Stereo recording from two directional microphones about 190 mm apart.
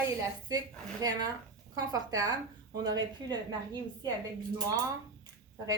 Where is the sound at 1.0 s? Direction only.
20° right (ahead or behind).